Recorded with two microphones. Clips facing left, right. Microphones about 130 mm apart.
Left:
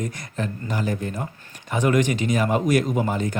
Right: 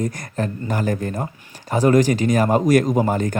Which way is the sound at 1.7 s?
35° right (ahead or behind).